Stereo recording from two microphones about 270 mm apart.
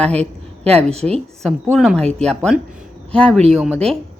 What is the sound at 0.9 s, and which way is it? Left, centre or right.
Speech, right.